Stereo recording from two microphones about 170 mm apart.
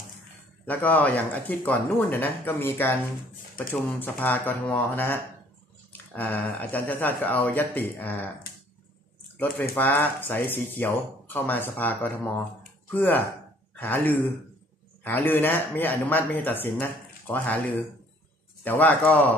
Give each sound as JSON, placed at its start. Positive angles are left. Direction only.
{"t": 0.7, "sound": "speech", "side_deg": 10}
{"t": 9.4, "sound": "speech", "side_deg": 10}